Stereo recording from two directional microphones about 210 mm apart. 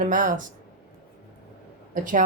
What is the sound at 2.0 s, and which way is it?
Speech, 40° right (ahead or behind).